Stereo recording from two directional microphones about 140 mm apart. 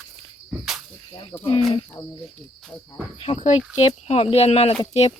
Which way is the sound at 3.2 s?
50° left (ahead or behind).